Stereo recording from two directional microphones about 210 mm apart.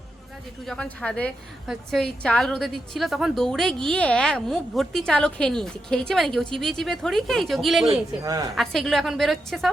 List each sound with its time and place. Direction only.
0.6 s a woman's voice: 5° left (ahead or behind)
8.2 s a woman's voice: 15° right (ahead or behind)
8.5 s a woman's voice: centre (ahead or behind)